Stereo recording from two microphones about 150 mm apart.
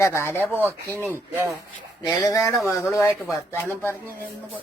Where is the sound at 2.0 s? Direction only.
20° left (ahead or behind).